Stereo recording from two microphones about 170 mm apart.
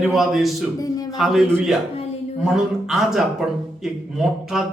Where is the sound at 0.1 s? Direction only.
Centre (ahead or behind).